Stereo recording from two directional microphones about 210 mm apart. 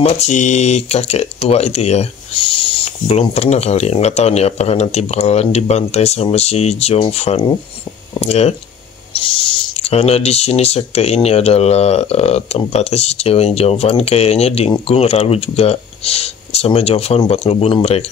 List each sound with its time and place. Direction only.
0.0 s speech: 35° left (ahead or behind)